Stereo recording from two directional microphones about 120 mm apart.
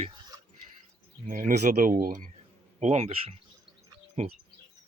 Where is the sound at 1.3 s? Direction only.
90° right.